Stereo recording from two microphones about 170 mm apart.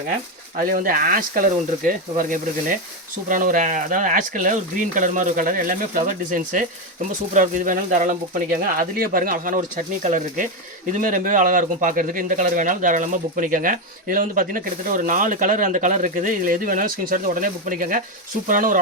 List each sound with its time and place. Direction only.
0.6 s speech: 55° right (ahead or behind)